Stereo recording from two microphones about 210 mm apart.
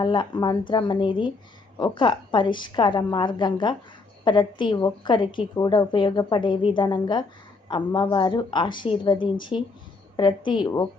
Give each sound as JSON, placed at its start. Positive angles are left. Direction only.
{"t": 0.0, "sound": "a woman's voice", "side_deg": 20}